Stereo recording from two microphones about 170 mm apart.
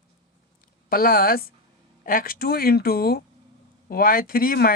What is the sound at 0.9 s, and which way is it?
Speech, 60° left (ahead or behind).